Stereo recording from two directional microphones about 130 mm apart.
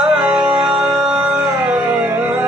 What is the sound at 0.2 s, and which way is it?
Music, 15° right (ahead or behind).